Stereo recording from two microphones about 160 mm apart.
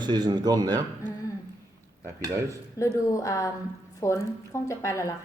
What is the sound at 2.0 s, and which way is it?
Speech, 20° right (ahead or behind).